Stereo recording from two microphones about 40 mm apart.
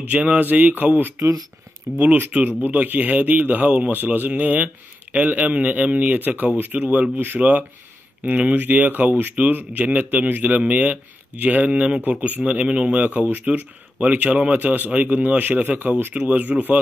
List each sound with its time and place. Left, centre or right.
0.0 s speech: right
1.9 s speech: right
2.3 s speech: right
3.9 s speech: right
6.8 s speech: right
10.6 s speech: right
14.6 s speech: right
14.9 s speech: right